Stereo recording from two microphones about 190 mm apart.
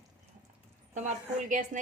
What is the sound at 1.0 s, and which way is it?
Speech, 40° right (ahead or behind).